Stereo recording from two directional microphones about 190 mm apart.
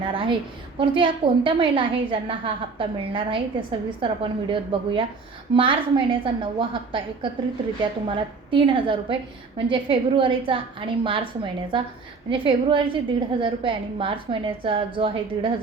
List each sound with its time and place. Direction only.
0.1 s a woman's voice: 25° right (ahead or behind)